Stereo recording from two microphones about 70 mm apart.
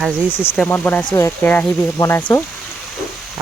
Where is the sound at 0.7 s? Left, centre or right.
Left.